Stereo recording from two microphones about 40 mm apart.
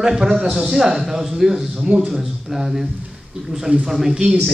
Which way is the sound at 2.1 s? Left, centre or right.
Centre.